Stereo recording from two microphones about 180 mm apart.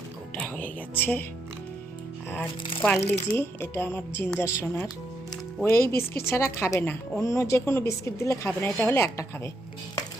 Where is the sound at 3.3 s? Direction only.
10° left (ahead or behind).